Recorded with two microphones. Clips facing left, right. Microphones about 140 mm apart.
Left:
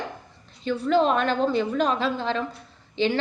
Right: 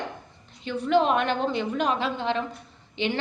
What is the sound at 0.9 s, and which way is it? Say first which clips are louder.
A woman's voice: even; 15° right (ahead or behind).